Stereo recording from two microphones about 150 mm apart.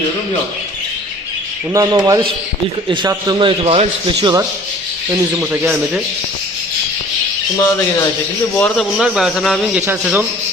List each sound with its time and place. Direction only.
1.7 s a man's voice: 25° right (ahead or behind); by 4.1 s 40° right (ahead or behind)
4.2 s speech: 25° right (ahead or behind)
5.3 s a man's voice: 15° right (ahead or behind)
8.5 s a man's voice: 5° left (ahead or behind); by 10.2 s 10° right (ahead or behind)